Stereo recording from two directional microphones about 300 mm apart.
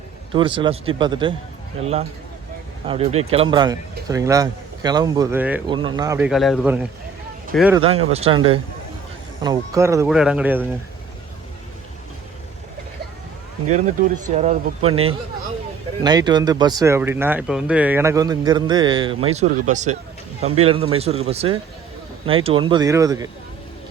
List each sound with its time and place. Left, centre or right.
0.3 s speech: centre
7.8 s speech: centre
13.7 s speech: right